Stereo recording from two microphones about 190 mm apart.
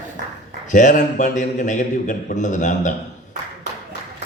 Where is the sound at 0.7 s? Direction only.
40° left (ahead or behind).